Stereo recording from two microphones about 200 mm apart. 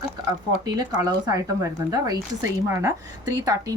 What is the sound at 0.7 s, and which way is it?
Speech, 20° right (ahead or behind).